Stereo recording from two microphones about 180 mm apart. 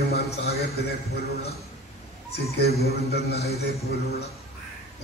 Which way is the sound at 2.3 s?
60° left (ahead or behind).